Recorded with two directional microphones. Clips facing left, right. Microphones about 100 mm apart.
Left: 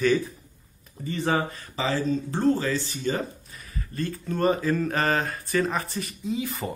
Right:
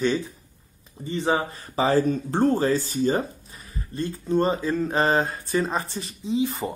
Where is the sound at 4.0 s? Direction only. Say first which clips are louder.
Right 3 dB; 25° right (ahead or behind).